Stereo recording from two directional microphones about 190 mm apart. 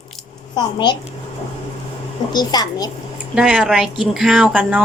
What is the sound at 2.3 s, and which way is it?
Speech, 20° left (ahead or behind).